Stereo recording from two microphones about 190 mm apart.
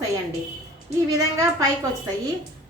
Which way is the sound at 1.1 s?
15° right (ahead or behind).